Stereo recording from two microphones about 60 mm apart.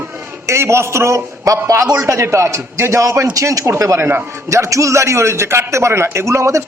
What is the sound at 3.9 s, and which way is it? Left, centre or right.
Speech, right.